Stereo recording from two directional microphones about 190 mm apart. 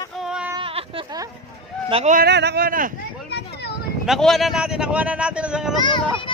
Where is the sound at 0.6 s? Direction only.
30° right (ahead or behind).